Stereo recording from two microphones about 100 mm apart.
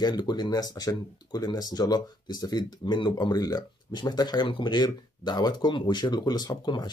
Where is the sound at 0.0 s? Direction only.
45° left (ahead or behind).